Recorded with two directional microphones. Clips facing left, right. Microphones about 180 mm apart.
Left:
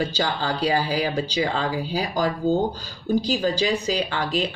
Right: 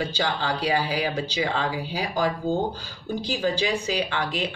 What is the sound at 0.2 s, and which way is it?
Speech, 40° left (ahead or behind).